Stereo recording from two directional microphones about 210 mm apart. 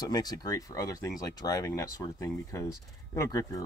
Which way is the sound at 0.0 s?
20° left (ahead or behind).